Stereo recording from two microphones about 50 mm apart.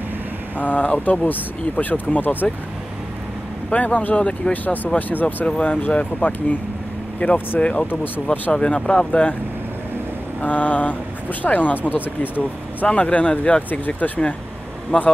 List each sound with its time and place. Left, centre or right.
0.6 s speech: left
3.7 s speech: left
8.5 s speech: centre
10.4 s speech: left
12.8 s speech: left
14.9 s speech: left